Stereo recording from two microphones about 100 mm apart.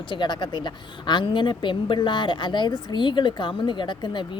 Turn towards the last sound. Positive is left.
turn(degrees=50)  # may be behind; listen again after turning